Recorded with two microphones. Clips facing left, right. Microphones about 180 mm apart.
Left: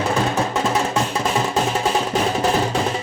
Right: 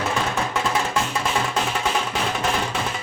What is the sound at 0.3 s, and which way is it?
Music, 35° left (ahead or behind).